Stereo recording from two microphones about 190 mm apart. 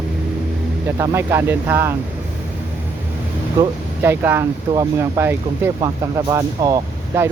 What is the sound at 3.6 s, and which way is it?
Speech, 10° right (ahead or behind).